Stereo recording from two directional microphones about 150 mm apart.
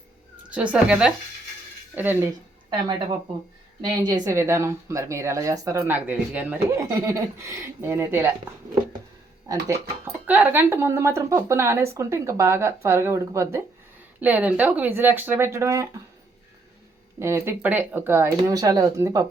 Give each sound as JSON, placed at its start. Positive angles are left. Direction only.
{"t": 0.5, "sound": "speech", "side_deg": -10}
{"t": 3.8, "sound": "speech", "side_deg": -30}
{"t": 10.2, "sound": "speech", "side_deg": -10}
{"t": 17.2, "sound": "speech", "side_deg": -20}